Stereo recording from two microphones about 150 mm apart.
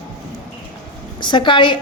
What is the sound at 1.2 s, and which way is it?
Speech, 30° left (ahead or behind).